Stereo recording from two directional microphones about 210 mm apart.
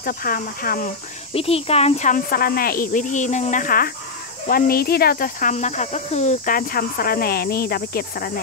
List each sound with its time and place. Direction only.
0.0 s speech: 45° left (ahead or behind)
1.3 s speech: 25° left (ahead or behind); by 8.3 s 45° left (ahead or behind)